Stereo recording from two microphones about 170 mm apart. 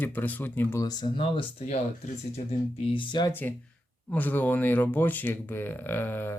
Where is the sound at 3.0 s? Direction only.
25° left (ahead or behind).